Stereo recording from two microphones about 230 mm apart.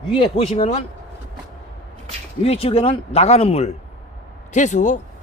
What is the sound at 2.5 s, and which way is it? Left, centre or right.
Speech, left.